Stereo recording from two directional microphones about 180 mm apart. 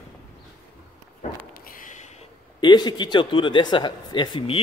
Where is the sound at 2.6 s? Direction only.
25° left (ahead or behind).